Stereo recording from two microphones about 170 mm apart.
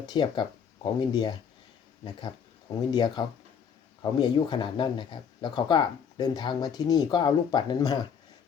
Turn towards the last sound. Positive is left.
turn(degrees=25)  # may be behind; listen again after turning